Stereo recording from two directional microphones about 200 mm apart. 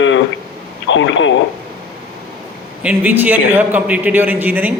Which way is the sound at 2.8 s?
5° right (ahead or behind).